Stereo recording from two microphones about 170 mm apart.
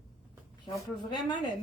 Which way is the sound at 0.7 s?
25° left (ahead or behind).